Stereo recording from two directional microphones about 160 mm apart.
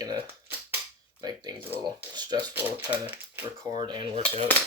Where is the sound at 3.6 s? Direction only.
25° right (ahead or behind).